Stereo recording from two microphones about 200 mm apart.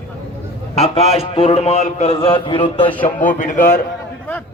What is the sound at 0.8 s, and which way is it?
A man's voice, 30° left (ahead or behind).